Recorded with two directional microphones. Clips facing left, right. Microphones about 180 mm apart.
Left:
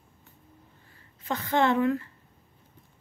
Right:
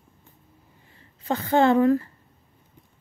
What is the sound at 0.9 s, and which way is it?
A woman's voice, 30° right (ahead or behind).